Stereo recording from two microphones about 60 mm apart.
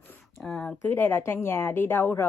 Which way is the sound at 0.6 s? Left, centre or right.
Left.